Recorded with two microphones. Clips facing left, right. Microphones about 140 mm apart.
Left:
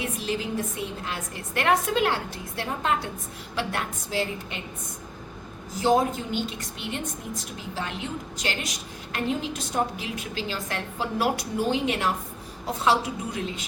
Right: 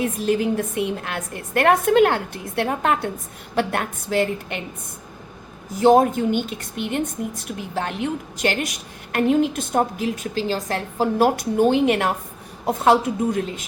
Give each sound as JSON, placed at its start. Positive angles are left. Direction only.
{"t": 0.0, "sound": "a woman's voice", "side_deg": -50}
{"t": 5.8, "sound": "a woman's voice", "side_deg": -55}